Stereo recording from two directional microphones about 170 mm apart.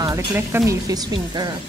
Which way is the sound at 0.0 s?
20° right (ahead or behind).